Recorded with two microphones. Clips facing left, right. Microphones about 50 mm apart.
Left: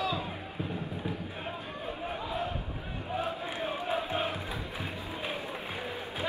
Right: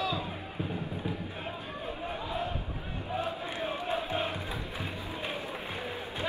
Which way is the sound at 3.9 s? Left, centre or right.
Centre.